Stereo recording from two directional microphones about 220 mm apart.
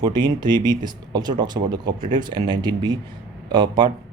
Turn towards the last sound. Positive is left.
turn(degrees=-20)  # may be behind; listen again after turning